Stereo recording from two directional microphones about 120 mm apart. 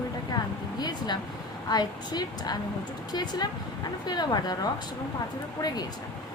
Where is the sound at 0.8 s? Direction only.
35° left (ahead or behind).